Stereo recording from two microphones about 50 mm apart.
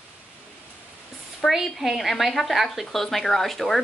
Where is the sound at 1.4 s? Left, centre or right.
Centre.